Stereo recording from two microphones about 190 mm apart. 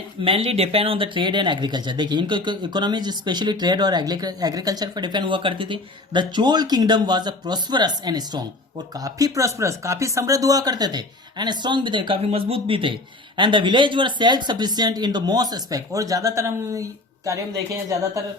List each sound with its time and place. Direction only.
0.2 s speech: 30° right (ahead or behind)